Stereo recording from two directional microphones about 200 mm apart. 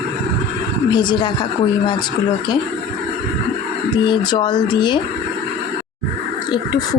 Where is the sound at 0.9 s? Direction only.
20° left (ahead or behind).